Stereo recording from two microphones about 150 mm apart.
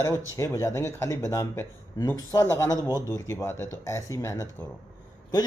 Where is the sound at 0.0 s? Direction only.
20° left (ahead or behind).